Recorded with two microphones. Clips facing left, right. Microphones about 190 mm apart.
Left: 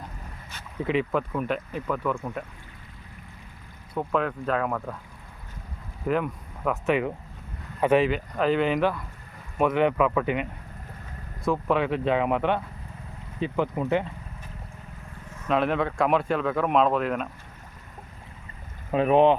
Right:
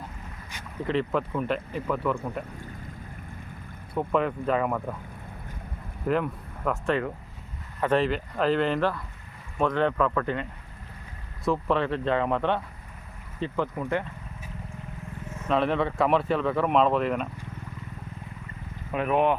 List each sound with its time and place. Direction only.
0.9 s speech: 5° left (ahead or behind)
3.9 s speech: centre (ahead or behind)
6.1 s speech: 5° left (ahead or behind)
15.4 s speech: 5° left (ahead or behind)
18.9 s speech: 30° left (ahead or behind)